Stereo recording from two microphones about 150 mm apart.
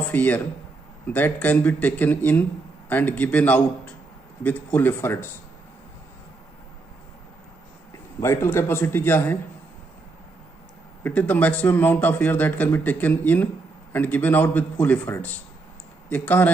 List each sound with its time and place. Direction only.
0.1 s speech: 10° left (ahead or behind)
8.2 s speech: 20° left (ahead or behind)
11.1 s speech: 10° left (ahead or behind)